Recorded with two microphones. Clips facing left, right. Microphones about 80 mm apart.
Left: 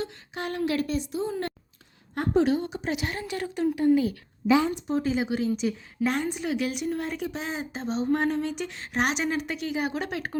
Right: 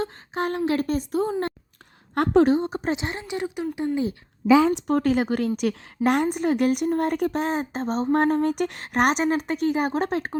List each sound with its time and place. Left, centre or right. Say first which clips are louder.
0.0 s speech: right 6 dB; right
2.1 s a woman's voice: right 5 dB; right
2.4 s a woman's voice: right 4 dB; right
2.9 s a woman's voice: right 2 dB; right
4.7 s a woman's voice: right 5 dB; right